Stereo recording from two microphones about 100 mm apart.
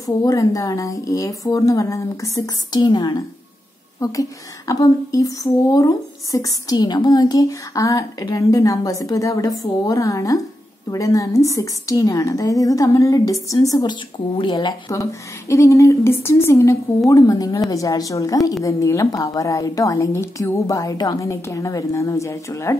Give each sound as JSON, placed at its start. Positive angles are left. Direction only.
{"t": 0.0, "sound": "speech", "side_deg": 35}
{"t": 4.0, "sound": "speech", "side_deg": 35}
{"t": 14.3, "sound": "speech", "side_deg": 50}